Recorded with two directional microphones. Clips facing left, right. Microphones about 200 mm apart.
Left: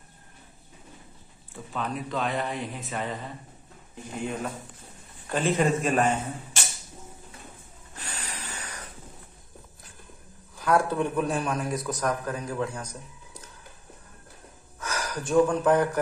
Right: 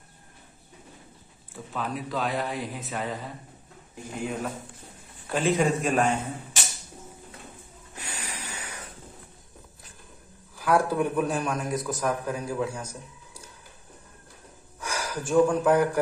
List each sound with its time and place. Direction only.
1.5 s speech: centre (ahead or behind)
7.9 s wheeze: 10° right (ahead or behind)
10.6 s a man's voice: 10° right (ahead or behind)
14.8 s speech: 10° right (ahead or behind)